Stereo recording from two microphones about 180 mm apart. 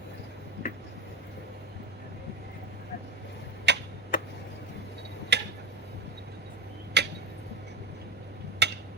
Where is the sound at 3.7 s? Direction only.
70° right (ahead or behind).